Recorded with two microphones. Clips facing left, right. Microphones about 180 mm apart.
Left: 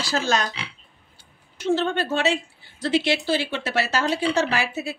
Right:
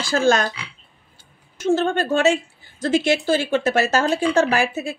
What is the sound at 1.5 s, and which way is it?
A woman's voice, 45° right (ahead or behind).